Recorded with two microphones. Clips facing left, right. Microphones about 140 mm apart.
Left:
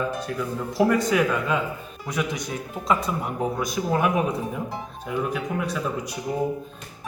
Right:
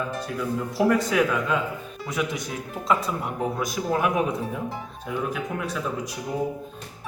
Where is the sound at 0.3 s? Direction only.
Centre (ahead or behind).